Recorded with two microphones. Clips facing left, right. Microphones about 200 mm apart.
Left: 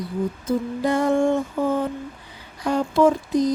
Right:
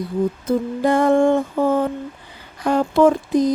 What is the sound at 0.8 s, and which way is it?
Mantra, 55° right (ahead or behind).